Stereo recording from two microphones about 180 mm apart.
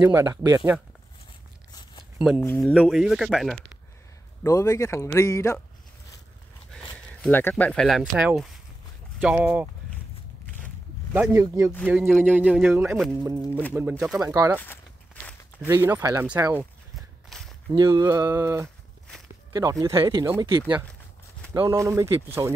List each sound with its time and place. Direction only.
0.0 s a man's voice: 15° right (ahead or behind)
1.7 s a sound: 25° left (ahead or behind)
2.1 s speech: 10° right (ahead or behind)
2.6 s speech: centre (ahead or behind)
4.4 s speech: 20° left (ahead or behind)
6.7 s a man's voice: 5° left (ahead or behind)
11.1 s a man's voice: 15° right (ahead or behind)
14.2 s speech: 20° right (ahead or behind)
15.6 s a man's voice: 15° right (ahead or behind)
16.9 s walk: centre (ahead or behind)
17.7 s a man's voice: 15° right (ahead or behind)
21.5 s a man's voice: 15° right (ahead or behind)